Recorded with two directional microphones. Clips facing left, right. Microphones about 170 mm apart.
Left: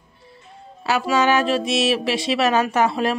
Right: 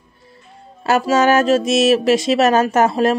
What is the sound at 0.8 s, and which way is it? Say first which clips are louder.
Speech: right 4 dB; 45° right (ahead or behind).